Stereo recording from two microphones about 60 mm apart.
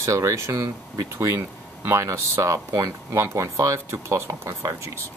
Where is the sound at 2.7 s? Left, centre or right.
Right.